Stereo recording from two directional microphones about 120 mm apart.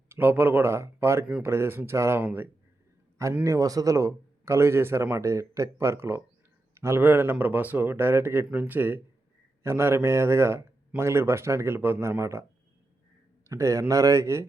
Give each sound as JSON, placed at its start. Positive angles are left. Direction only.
{"t": 0.1, "sound": "speech", "side_deg": -15}
{"t": 13.5, "sound": "speech", "side_deg": -25}